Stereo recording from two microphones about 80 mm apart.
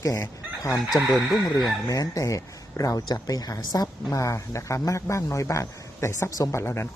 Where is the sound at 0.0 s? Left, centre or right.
Left.